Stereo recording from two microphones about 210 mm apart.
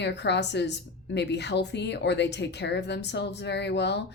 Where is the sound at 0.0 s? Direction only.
55° left (ahead or behind).